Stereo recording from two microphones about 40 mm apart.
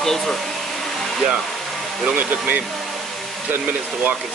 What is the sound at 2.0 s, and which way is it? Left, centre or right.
Speech, right.